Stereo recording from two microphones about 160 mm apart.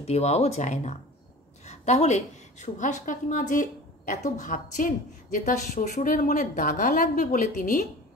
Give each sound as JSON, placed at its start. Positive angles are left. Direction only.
{"t": 0.0, "sound": "a woman's voice", "side_deg": 45}